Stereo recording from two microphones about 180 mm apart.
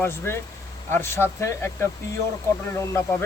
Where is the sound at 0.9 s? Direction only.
10° left (ahead or behind).